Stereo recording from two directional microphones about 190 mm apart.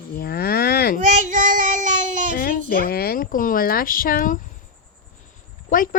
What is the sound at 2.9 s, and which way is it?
Speech, 55° left (ahead or behind).